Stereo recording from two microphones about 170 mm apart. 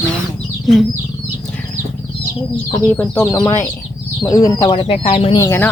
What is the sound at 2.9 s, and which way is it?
Speech, 10° left (ahead or behind).